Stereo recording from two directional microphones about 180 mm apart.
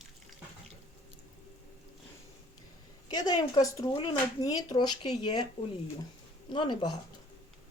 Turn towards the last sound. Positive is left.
turn(degrees=25)  # may be behind; listen again after turning